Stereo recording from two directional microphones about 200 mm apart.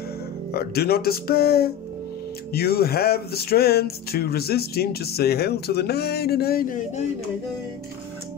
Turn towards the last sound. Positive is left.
turn(degrees=40)  # may be behind; listen again after turning